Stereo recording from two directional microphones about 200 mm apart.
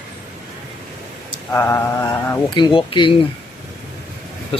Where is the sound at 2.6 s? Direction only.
25° left (ahead or behind).